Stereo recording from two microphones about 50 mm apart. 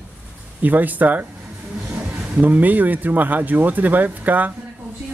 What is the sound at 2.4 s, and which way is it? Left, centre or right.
Speech, right.